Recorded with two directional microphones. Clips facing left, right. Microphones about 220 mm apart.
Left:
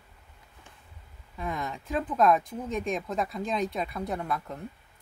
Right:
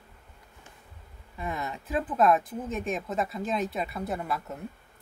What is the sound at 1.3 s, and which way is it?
Speech, 5° right (ahead or behind).